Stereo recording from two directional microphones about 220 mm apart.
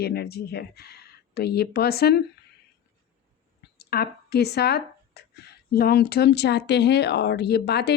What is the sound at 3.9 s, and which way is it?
Speech, 45° left (ahead or behind).